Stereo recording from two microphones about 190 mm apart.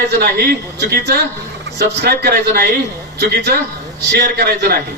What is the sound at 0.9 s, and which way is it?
A man's voice, 60° right (ahead or behind).